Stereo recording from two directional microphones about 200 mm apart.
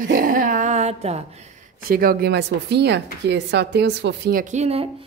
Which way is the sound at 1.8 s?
45° right (ahead or behind).